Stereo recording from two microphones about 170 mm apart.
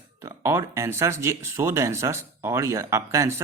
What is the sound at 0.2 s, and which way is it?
Speech, 20° right (ahead or behind).